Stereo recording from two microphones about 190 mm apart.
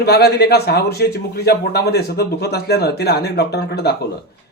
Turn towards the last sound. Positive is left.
turn(degrees=60)  # may be behind; listen again after turning